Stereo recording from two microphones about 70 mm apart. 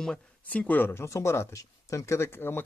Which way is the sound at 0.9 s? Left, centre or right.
Left.